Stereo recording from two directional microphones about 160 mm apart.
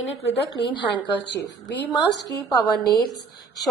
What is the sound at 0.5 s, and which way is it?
Speech, 30° left (ahead or behind).